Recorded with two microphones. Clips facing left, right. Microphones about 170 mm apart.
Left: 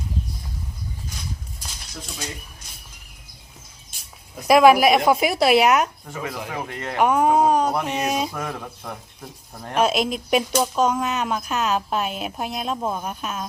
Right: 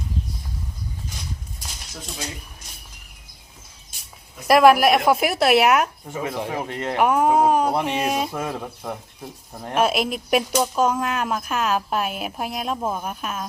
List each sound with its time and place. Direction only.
4.4 s a woman's voice: centre (ahead or behind)
6.1 s speech: 25° right (ahead or behind)
6.9 s speech: centre (ahead or behind)
7.8 s a sound: 10° right (ahead or behind)
8.4 s a sound: 15° right (ahead or behind)
9.2 s a woman's voice: 10° right (ahead or behind)